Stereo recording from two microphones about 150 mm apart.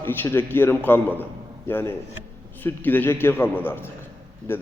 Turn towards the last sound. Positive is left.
turn(degrees=15)  # may be behind; listen again after turning